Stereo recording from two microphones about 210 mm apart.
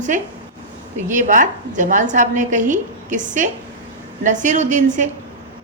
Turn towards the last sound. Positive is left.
turn(degrees=-35)  # may be behind; listen again after turning